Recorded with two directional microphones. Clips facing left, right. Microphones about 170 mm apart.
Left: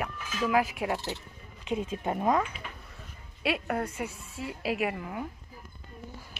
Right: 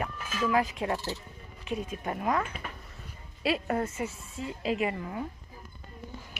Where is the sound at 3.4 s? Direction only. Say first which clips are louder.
Right 1 dB; centre (ahead or behind).